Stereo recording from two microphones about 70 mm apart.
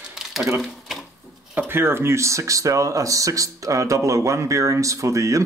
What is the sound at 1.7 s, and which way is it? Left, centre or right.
Speech, right.